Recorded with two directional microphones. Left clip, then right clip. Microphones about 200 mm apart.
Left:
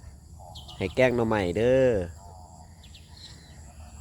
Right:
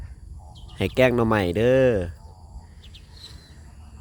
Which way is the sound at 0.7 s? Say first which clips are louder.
Right 4 dB; 30° right (ahead or behind).